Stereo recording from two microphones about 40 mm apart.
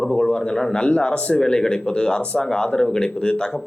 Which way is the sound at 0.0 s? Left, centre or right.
Centre.